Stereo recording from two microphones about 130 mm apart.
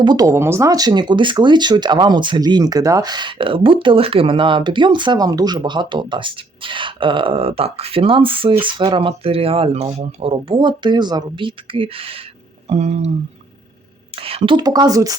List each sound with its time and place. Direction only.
0.0 s speech: 30° right (ahead or behind)
12.6 s speech: 60° right (ahead or behind)
14.2 s speech: 45° right (ahead or behind); by 15.1 s 25° right (ahead or behind)